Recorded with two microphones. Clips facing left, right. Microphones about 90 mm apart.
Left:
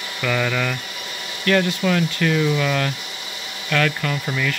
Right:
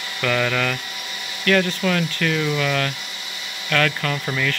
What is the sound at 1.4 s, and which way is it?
Speech, 15° left (ahead or behind).